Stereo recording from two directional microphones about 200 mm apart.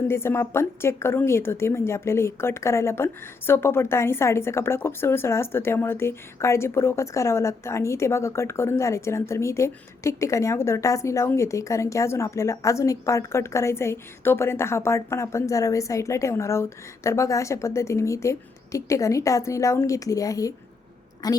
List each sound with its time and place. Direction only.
0.1 s a woman's voice: 10° left (ahead or behind)